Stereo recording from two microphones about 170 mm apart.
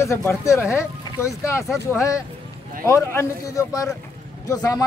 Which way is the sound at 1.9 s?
20° left (ahead or behind).